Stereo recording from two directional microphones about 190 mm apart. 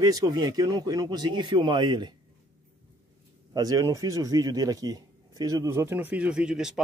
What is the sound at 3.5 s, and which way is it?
Speech, 20° right (ahead or behind).